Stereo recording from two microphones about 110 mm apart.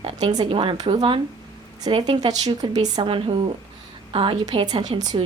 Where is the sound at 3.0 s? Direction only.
55° right (ahead or behind).